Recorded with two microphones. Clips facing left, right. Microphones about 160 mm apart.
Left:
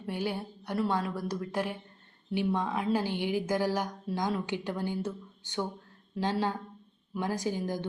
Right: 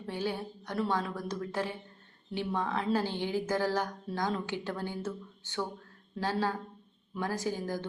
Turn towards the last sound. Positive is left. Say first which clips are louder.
# left 2 dB
turn(degrees=15)  # may be behind; listen again after turning